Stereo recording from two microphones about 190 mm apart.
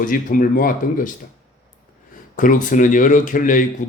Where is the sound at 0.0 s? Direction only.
45° left (ahead or behind).